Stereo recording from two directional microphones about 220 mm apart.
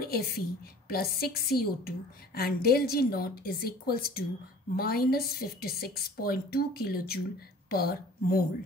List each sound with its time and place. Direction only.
0.0 s a woman's voice: 45° left (ahead or behind)